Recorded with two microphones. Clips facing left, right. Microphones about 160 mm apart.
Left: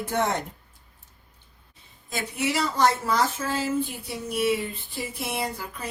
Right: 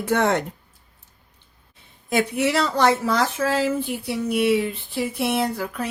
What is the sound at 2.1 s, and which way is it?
A woman's voice, 65° right (ahead or behind).